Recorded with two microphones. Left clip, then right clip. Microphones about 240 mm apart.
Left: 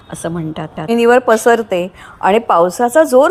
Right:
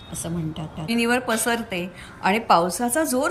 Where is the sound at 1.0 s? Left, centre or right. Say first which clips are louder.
Left 14 dB; left.